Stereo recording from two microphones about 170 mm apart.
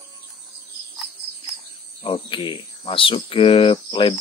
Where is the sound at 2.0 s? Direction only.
30° left (ahead or behind).